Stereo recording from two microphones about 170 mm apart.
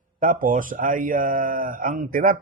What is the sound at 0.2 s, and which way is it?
A man's voice, 55° right (ahead or behind).